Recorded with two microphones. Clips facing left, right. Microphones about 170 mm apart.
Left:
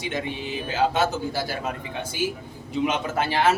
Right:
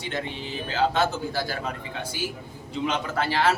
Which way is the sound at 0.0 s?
15° left (ahead or behind).